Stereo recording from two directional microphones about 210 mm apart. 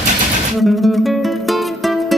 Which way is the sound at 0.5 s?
Centre (ahead or behind).